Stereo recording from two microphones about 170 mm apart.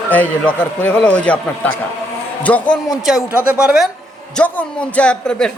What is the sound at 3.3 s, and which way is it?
A man's voice, 15° left (ahead or behind).